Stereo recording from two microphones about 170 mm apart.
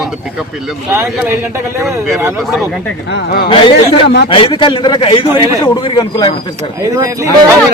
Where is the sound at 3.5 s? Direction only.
30° left (ahead or behind).